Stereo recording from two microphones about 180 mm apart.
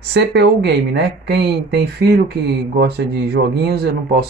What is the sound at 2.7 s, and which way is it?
Speech, 65° right (ahead or behind).